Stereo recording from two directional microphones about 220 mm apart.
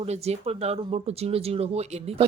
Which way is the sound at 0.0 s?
30° right (ahead or behind).